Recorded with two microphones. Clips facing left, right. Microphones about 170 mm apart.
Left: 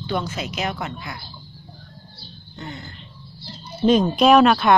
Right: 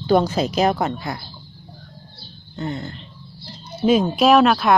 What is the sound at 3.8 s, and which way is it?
Speech, 5° right (ahead or behind).